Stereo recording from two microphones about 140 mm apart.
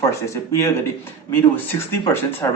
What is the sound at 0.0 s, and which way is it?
A man's voice, 20° left (ahead or behind).